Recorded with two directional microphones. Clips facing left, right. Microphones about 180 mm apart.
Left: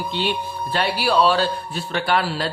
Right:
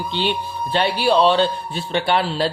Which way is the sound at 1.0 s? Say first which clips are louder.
Right 3 dB; 30° right (ahead or behind).